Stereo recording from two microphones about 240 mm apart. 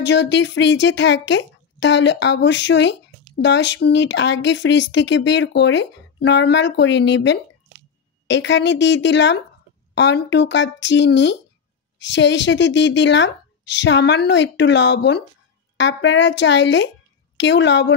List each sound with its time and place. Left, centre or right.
0.0 s speech: left